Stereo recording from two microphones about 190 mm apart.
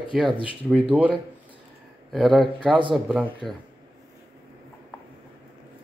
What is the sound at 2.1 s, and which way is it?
Speech, centre (ahead or behind).